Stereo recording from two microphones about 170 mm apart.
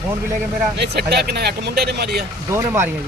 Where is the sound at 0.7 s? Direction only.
75° right (ahead or behind).